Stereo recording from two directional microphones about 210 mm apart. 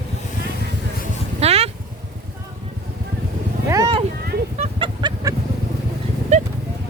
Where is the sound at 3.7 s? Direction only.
15° right (ahead or behind).